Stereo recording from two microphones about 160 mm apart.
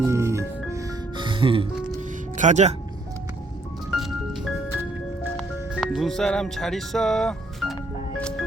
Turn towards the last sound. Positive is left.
turn(degrees=0)  # may be behind; listen again after turning